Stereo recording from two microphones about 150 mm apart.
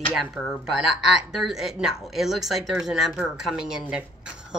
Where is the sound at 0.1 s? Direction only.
5° right (ahead or behind).